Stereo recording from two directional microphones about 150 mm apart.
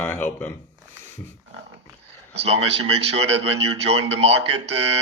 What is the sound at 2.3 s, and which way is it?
Speech, 40° right (ahead or behind).